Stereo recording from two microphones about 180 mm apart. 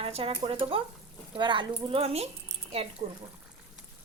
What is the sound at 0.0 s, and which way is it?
Speech, 30° right (ahead or behind).